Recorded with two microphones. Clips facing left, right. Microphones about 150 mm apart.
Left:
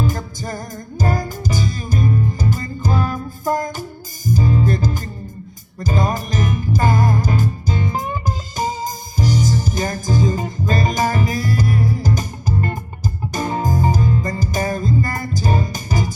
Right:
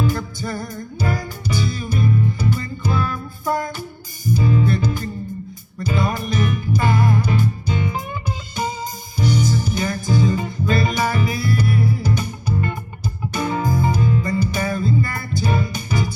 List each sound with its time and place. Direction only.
0.0 s music: 40° left (ahead or behind)